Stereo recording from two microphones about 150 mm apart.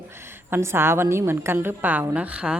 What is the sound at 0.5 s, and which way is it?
A woman's voice, 15° right (ahead or behind).